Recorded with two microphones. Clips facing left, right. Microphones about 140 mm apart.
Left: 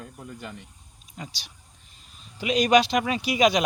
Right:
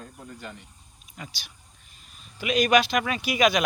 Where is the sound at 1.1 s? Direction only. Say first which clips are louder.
Left 2 dB; 25° left (ahead or behind).